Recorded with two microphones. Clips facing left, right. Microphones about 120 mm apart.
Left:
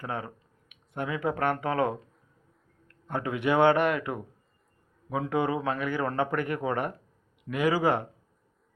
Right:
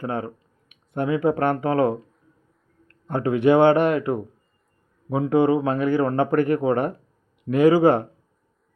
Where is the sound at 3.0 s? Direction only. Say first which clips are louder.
Right 9 dB; 30° right (ahead or behind).